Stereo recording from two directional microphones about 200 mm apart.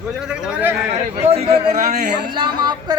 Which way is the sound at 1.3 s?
30° right (ahead or behind).